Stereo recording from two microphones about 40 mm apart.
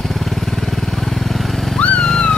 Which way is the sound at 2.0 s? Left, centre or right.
Centre.